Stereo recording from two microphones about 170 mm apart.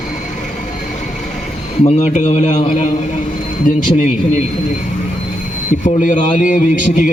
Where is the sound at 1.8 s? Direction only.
40° left (ahead or behind).